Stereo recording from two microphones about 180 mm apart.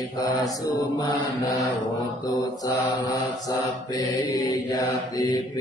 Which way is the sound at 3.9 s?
25° left (ahead or behind).